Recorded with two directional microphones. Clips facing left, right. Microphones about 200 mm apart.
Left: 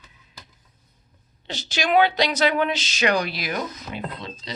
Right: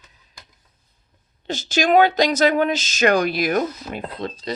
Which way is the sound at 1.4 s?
45° right (ahead or behind).